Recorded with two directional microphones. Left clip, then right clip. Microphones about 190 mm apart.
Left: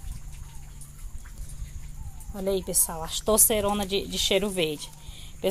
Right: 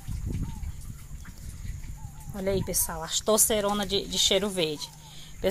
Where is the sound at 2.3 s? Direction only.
5° left (ahead or behind).